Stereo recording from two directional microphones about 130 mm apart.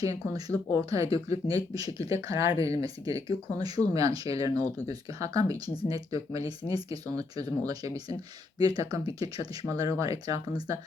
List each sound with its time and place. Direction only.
0.0 s speech: 30° right (ahead or behind)